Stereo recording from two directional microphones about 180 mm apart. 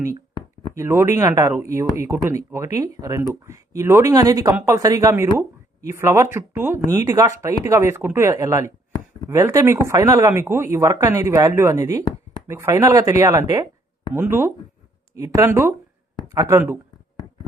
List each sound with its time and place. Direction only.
0.7 s speech: 15° right (ahead or behind)